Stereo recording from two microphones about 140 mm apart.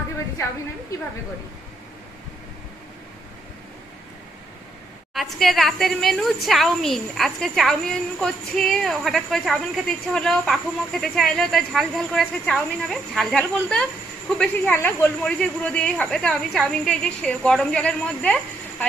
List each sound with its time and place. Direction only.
0.9 s a woman's voice: 20° left (ahead or behind)
5.1 s a woman's voice: centre (ahead or behind)